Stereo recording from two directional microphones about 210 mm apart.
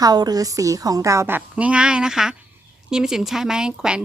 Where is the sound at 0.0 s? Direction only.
20° right (ahead or behind).